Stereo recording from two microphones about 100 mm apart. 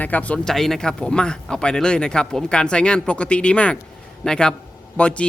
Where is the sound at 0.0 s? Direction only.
15° left (ahead or behind).